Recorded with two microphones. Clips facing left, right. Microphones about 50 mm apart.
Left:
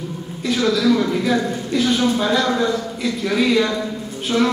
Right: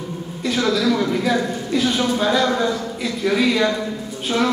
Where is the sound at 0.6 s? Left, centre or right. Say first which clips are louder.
Left 2 dB; centre.